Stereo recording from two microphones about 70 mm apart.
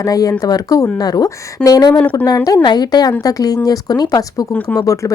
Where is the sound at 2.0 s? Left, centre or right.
Left.